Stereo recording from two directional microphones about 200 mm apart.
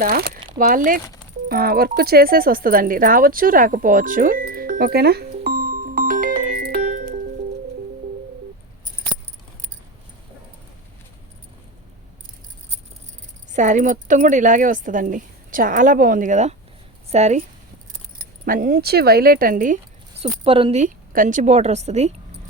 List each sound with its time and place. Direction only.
0.0 s speech: 45° right (ahead or behind)
1.5 s music: 50° right (ahead or behind)
13.5 s a woman's voice: 40° right (ahead or behind)
18.4 s speech: 45° right (ahead or behind)
20.2 s a woman's voice: 25° right (ahead or behind)